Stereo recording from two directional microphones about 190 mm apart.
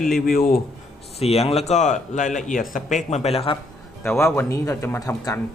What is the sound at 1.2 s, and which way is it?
Speech, 30° left (ahead or behind).